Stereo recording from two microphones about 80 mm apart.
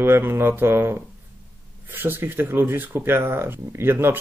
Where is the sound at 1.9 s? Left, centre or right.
Right.